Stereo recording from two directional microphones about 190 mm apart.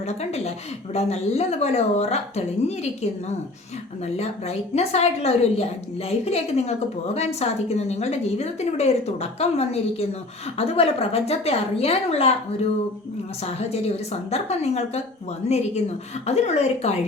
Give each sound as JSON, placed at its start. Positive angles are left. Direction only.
{"t": 0.0, "sound": "a woman's voice", "side_deg": 35}
{"t": 13.4, "sound": "a woman's voice", "side_deg": 35}